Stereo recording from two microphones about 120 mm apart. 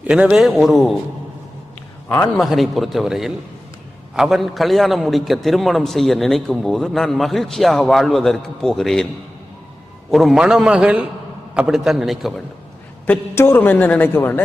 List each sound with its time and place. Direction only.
0.1 s a man's voice: 5° right (ahead or behind)
2.0 s a man's voice: 25° left (ahead or behind)
2.4 s a man's voice: centre (ahead or behind)
10.1 s a man's voice: centre (ahead or behind)
13.1 s a woman's voice: 20° left (ahead or behind)